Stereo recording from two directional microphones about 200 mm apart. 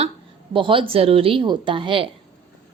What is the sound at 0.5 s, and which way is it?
A woman's voice, 25° right (ahead or behind).